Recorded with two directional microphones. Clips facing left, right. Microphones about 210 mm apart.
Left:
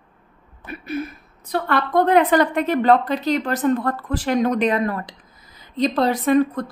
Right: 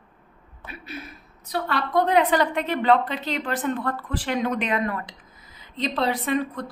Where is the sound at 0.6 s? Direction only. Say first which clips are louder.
Left 10 dB; 55° left (ahead or behind).